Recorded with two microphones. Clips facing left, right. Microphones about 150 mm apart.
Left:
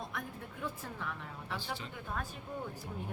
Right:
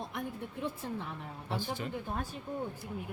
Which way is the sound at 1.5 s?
45° right (ahead or behind).